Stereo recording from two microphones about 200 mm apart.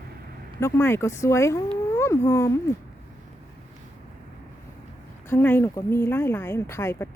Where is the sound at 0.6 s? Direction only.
10° left (ahead or behind).